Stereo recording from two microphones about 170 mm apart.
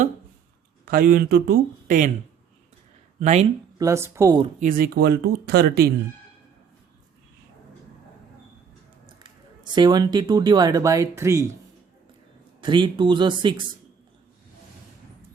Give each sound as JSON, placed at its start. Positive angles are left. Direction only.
{"t": 0.9, "sound": "speech", "side_deg": -60}
{"t": 3.2, "sound": "speech", "side_deg": -45}
{"t": 3.8, "sound": "speech", "side_deg": -15}
{"t": 4.6, "sound": "speech", "side_deg": -60}
{"t": 9.0, "sound": "a sound", "side_deg": -25}
{"t": 9.7, "sound": "speech", "side_deg": -25}
{"t": 12.6, "sound": "speech", "side_deg": -25}